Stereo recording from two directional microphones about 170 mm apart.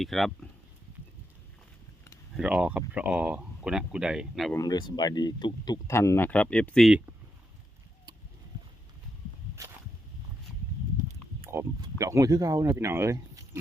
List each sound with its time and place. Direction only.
0.0 s speech: centre (ahead or behind)
2.3 s speech: 5° right (ahead or behind)
4.5 s speech: 25° left (ahead or behind); by 6.9 s 5° left (ahead or behind)
11.4 s speech: 20° right (ahead or behind)